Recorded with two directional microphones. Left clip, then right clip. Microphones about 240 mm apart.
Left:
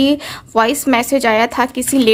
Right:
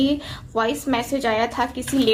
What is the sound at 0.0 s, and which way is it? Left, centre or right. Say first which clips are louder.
A woman's voice: left 7 dB; left.